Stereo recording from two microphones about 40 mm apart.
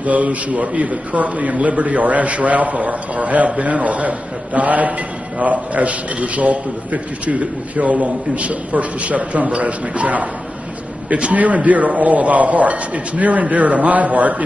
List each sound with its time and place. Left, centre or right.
0.0 s a man's voice: right
11.3 s a man's voice: right